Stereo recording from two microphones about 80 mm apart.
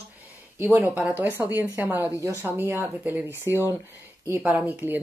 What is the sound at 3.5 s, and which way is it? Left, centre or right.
Speech, right.